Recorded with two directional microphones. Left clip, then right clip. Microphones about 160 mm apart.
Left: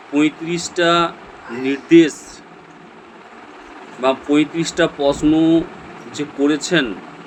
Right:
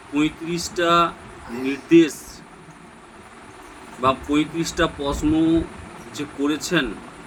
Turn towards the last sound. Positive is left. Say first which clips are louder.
# left 5 dB
turn(degrees=-15)  # may be behind; listen again after turning